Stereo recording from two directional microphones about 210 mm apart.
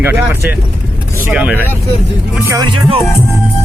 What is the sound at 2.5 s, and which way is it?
Speech, 20° right (ahead or behind).